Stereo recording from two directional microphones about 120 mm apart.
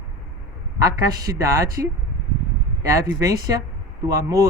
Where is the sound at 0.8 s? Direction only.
30° right (ahead or behind).